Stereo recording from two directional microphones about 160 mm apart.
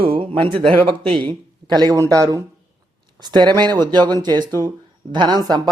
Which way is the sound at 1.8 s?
25° right (ahead or behind).